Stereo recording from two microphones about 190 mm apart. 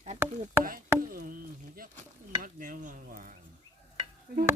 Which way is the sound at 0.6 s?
50° right (ahead or behind).